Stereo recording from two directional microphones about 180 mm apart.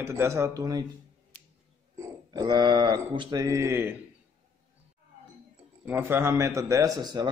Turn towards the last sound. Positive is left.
turn(degrees=-20)  # may be behind; listen again after turning